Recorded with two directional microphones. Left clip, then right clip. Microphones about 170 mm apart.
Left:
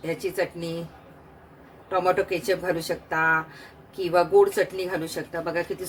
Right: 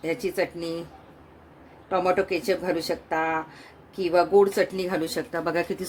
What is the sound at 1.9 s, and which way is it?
Speech, 30° right (ahead or behind).